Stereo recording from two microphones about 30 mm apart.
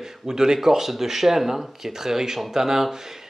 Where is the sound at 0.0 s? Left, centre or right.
Centre.